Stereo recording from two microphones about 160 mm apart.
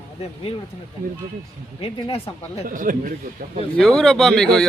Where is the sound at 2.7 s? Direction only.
60° right (ahead or behind).